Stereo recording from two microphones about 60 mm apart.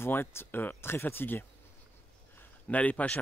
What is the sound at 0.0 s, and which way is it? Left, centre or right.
Speech, left.